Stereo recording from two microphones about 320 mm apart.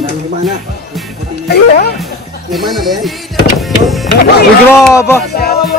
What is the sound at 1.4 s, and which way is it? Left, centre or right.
Speech, left.